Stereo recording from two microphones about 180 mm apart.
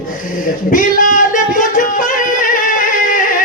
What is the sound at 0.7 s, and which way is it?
Music, 50° left (ahead or behind).